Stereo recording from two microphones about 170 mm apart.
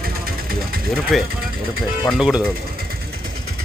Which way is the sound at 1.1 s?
Centre (ahead or behind).